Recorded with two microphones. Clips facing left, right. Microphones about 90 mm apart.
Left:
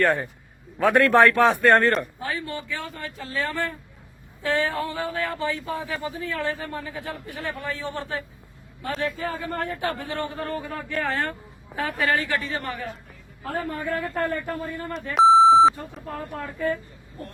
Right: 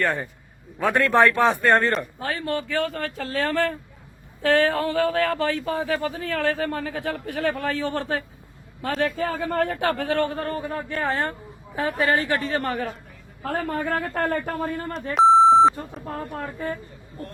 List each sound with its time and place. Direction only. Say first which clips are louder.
0.0 s a man's voice: left 3 dB; centre (ahead or behind)
2.1 s speech: right 4 dB; 55° right (ahead or behind); by 10.3 s 70° right (ahead or behind)
10.3 s a woman's voice: right 2 dB; 40° right (ahead or behind)
12.4 s a woman's voice: right 5 dB; 50° right (ahead or behind)
13.4 s speech: right 3 dB; 60° right (ahead or behind)
15.1 s beep: even; centre (ahead or behind)
16.4 s speech: left 6 dB; 30° right (ahead or behind)